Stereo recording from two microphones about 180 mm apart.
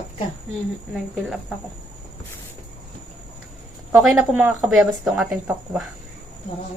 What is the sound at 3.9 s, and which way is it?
Speech, 10° right (ahead or behind).